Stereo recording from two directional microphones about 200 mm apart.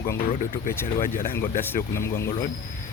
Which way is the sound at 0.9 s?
45° left (ahead or behind).